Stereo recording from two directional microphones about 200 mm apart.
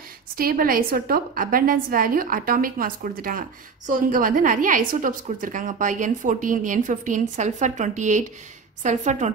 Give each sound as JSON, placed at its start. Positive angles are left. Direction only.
{"t": 0.4, "sound": "a woman's voice", "side_deg": -45}